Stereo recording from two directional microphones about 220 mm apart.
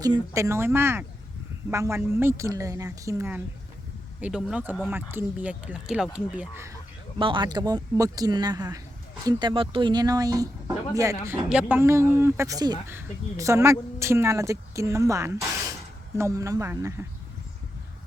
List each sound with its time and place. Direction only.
0.0 s speech: 15° right (ahead or behind)
7.2 s speech: 20° right (ahead or behind)